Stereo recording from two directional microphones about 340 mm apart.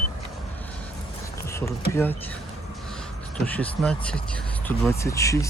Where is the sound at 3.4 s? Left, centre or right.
Centre.